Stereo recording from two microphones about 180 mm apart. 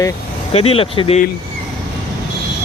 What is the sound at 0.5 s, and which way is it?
Speech, 35° left (ahead or behind).